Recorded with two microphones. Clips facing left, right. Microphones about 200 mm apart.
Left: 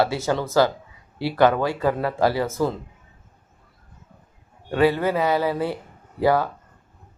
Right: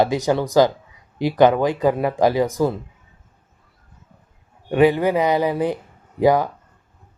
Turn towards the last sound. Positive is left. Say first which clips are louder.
# right 3 dB
turn(degrees=-15)  # may be behind; listen again after turning